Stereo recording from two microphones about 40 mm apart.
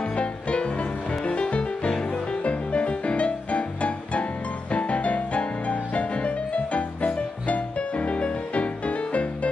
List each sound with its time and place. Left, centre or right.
0.0 s music: left